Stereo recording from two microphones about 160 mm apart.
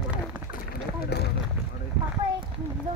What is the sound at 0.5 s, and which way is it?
Run, 75° left (ahead or behind).